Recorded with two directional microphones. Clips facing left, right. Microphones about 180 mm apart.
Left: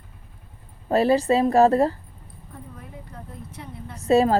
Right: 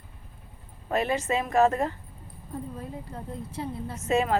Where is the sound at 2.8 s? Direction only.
30° right (ahead or behind).